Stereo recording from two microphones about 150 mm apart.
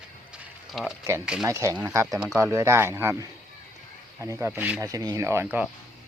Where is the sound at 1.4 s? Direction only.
20° right (ahead or behind).